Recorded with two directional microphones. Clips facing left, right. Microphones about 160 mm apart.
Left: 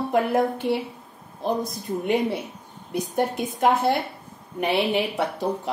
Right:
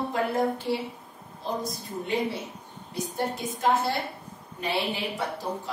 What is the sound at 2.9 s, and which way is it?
Speech, 60° left (ahead or behind).